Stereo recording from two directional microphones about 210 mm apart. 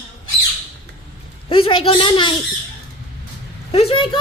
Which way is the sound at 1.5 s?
25° left (ahead or behind).